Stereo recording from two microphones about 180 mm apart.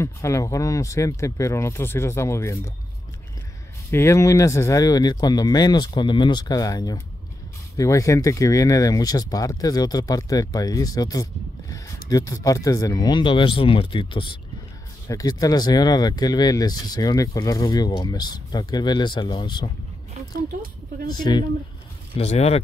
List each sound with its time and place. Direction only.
0.0 s speech: 15° left (ahead or behind)
3.9 s speech: 15° left (ahead or behind)
21.1 s speech: 25° left (ahead or behind)
22.1 s speech: 35° left (ahead or behind)